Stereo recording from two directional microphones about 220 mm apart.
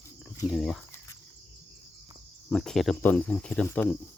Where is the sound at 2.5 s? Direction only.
Centre (ahead or behind).